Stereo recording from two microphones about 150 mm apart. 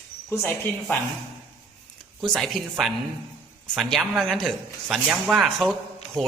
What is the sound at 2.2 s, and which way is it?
Speech, centre (ahead or behind).